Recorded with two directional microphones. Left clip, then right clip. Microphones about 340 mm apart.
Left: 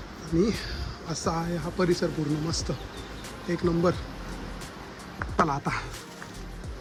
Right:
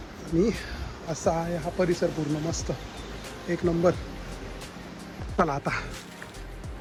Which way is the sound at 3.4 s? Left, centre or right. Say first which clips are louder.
Right 2 dB; centre.